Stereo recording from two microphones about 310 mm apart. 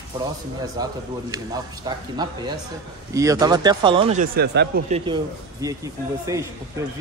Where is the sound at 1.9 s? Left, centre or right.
Centre.